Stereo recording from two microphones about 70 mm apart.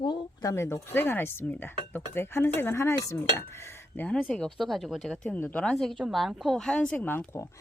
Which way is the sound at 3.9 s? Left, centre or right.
Centre.